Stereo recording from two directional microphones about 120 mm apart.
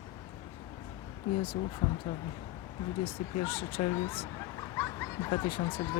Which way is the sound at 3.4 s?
50° left (ahead or behind).